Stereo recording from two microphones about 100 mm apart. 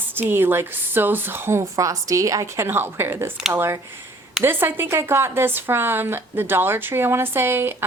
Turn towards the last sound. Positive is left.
turn(degrees=-25)  # may be behind; listen again after turning